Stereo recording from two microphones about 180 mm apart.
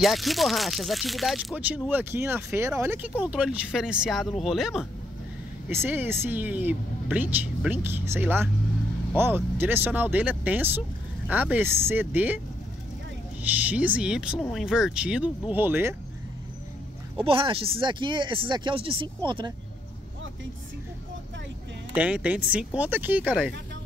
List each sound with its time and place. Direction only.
0.0 s speech: centre (ahead or behind)
5.7 s speech: 15° right (ahead or behind)
13.4 s speech: 10° right (ahead or behind)
17.2 s speech: 30° right (ahead or behind)
21.9 s speech: 10° right (ahead or behind)